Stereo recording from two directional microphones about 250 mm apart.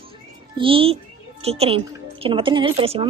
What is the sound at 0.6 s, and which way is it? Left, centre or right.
A woman's voice, right.